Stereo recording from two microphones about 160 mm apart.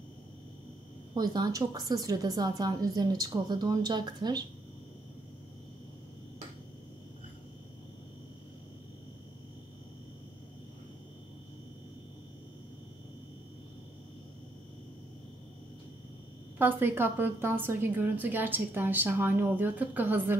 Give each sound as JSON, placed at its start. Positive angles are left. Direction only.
{"t": 1.1, "sound": "a woman's voice", "side_deg": -25}
{"t": 16.5, "sound": "a woman's voice", "side_deg": -15}